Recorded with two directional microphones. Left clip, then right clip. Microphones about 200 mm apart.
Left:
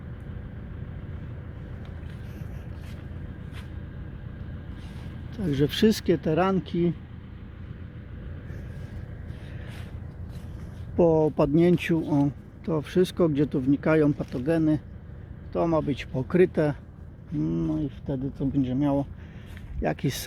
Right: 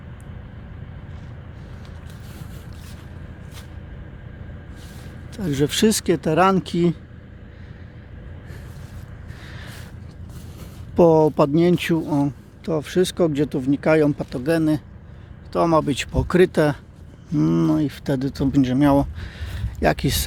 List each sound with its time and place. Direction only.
5.4 s speech: 15° right (ahead or behind)
10.9 s speech: 25° right (ahead or behind)
15.5 s speech: 25° right (ahead or behind)
17.3 s speech: 40° right (ahead or behind)
19.8 s speech: 20° right (ahead or behind)